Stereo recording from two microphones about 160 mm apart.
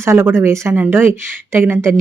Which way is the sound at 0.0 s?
15° right (ahead or behind).